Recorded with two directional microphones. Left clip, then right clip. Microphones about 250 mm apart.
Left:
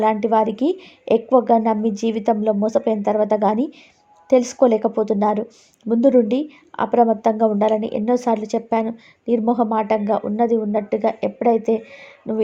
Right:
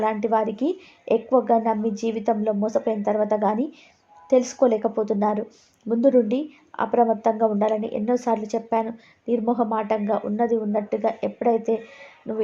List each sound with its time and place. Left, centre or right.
0.0 s speech: left